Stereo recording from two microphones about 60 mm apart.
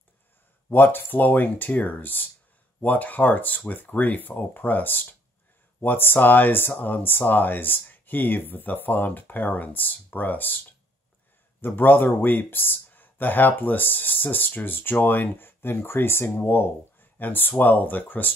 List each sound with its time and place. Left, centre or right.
0.7 s speech: left
11.6 s speech: left